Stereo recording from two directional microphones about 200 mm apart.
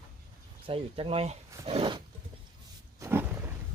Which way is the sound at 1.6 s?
30° right (ahead or behind).